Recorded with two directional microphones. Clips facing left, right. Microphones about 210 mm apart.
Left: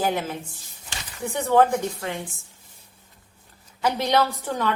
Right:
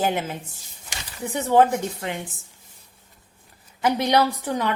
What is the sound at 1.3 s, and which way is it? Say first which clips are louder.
Speech: right 1 dB; 20° right (ahead or behind).